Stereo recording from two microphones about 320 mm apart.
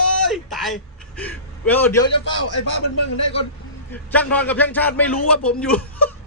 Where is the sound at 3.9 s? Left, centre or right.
Centre.